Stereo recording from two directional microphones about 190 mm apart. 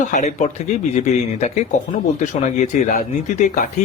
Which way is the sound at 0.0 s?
40° left (ahead or behind).